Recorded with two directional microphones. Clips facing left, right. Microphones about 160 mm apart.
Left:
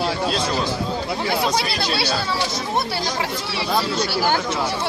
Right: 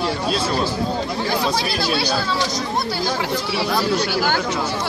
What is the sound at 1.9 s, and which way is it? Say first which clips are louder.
Speech: right 1 dB; 30° left (ahead or behind).